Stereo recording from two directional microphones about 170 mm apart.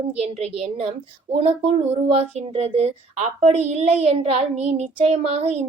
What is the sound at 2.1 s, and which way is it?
A woman's voice, 40° right (ahead or behind).